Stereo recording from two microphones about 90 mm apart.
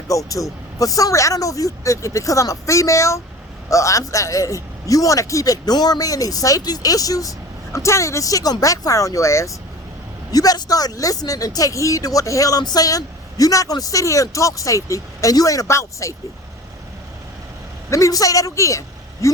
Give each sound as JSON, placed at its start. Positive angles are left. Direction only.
{"t": 0.1, "sound": "speech", "side_deg": 40}
{"t": 10.3, "sound": "speech", "side_deg": 45}
{"t": 17.9, "sound": "speech", "side_deg": 40}